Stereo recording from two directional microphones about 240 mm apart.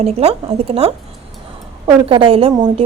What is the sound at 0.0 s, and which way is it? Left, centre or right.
Speech, right.